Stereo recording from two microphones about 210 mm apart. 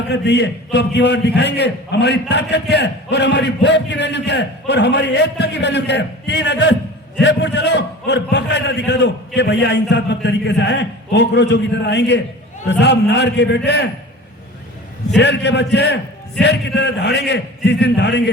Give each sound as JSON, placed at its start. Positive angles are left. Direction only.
{"t": 0.1, "sound": "a man's voice", "side_deg": 55}
{"t": 15.2, "sound": "a man's voice", "side_deg": 55}